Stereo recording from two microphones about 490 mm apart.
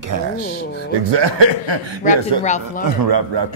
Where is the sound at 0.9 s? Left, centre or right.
Right.